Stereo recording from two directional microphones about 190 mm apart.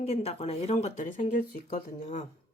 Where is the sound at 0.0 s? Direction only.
35° left (ahead or behind).